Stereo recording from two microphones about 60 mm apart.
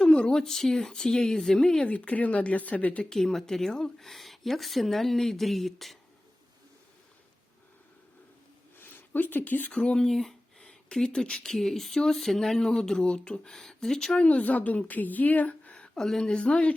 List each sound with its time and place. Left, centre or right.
0.0 s speech: centre
1.9 s a woman's voice: left
3.0 s a woman's voice: centre
8.8 s speech: left
9.7 s speech: centre
14.3 s a woman's voice: left
16.0 s speech: centre